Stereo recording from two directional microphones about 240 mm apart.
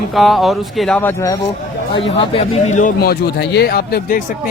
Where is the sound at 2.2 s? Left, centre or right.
Left.